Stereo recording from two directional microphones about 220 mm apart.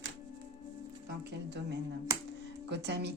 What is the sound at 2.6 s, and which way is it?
Speech, 50° right (ahead or behind).